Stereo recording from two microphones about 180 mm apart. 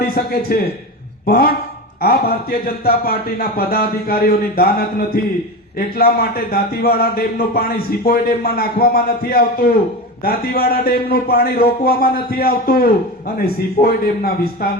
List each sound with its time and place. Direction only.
0.1 s a man's voice: 55° left (ahead or behind)